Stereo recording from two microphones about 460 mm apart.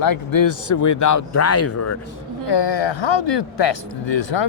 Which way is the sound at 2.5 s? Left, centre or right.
Left.